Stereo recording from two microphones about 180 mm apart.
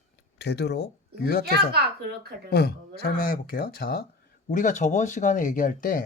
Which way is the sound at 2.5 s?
60° left (ahead or behind).